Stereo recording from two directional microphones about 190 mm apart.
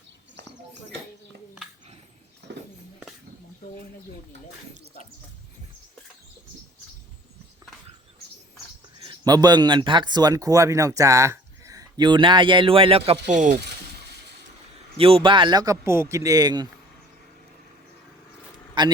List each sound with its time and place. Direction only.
2.5 s a sound: 65° right (ahead or behind)
9.0 s speech: 20° right (ahead or behind); by 13.6 s 40° right (ahead or behind)
14.9 s speech: 30° right (ahead or behind)
18.7 s a man's voice: 25° right (ahead or behind)